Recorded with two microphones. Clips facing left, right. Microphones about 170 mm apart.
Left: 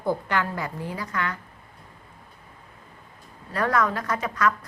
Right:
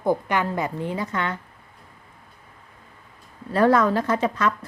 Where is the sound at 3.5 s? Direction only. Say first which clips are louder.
Right 6 dB; 30° right (ahead or behind).